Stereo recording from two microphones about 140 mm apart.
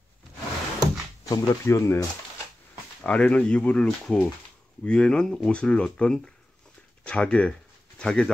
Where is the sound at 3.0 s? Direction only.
10° left (ahead or behind).